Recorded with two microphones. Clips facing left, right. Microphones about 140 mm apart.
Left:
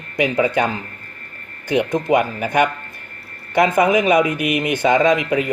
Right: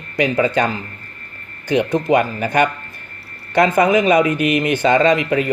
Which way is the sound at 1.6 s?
15° left (ahead or behind).